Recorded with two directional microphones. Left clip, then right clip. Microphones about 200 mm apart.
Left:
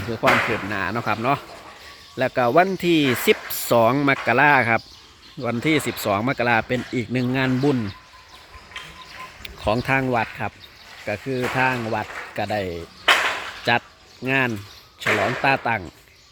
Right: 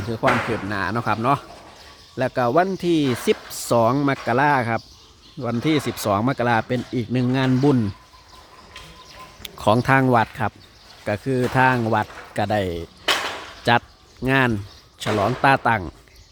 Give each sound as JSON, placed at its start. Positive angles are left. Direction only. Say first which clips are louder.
{"t": 0.2, "sound": "speech", "louder": "left 2 dB", "side_deg": -10}
{"t": 9.4, "sound": "speech", "louder": "right 4 dB", "side_deg": -25}